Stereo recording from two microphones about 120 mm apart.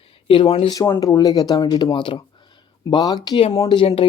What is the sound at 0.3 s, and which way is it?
Speech, 45° left (ahead or behind).